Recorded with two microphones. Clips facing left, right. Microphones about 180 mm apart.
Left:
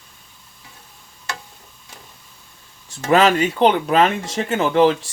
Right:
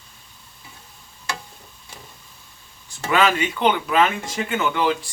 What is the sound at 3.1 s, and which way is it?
Speech, 40° left (ahead or behind).